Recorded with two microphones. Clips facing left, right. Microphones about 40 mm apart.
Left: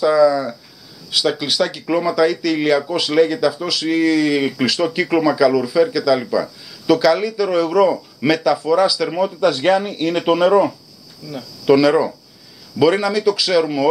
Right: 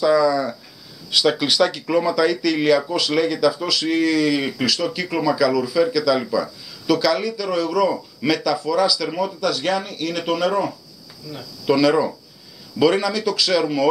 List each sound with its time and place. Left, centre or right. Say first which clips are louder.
0.0 s speech: left 3 dB; centre
11.6 s speech: left 4 dB; centre